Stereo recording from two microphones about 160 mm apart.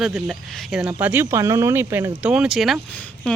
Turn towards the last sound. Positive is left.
turn(degrees=5)  # may be behind; listen again after turning